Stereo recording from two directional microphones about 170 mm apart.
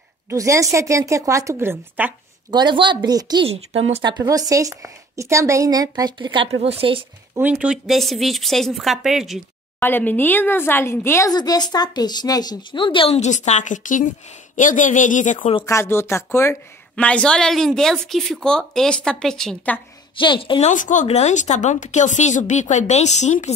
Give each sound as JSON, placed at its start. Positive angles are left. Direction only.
{"t": 0.3, "sound": "a woman's voice", "side_deg": -20}
{"t": 2.5, "sound": "a woman's voice", "side_deg": -25}
{"t": 3.4, "sound": "speech", "side_deg": -35}
{"t": 4.2, "sound": "a woman's voice", "side_deg": -20}
{"t": 7.3, "sound": "a woman's voice", "side_deg": -5}
{"t": 9.8, "sound": "speech", "side_deg": 10}
{"t": 15.3, "sound": "a woman's voice", "side_deg": 30}
{"t": 15.6, "sound": "a woman's voice", "side_deg": 15}
{"t": 20.2, "sound": "a woman's voice", "side_deg": 30}
{"t": 20.7, "sound": "speech", "side_deg": 50}